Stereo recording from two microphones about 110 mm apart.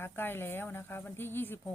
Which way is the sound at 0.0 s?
20° left (ahead or behind).